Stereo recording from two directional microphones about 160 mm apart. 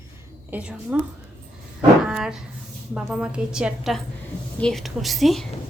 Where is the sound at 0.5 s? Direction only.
5° right (ahead or behind).